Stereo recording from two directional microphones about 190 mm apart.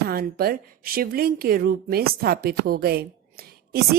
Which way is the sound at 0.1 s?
55° right (ahead or behind).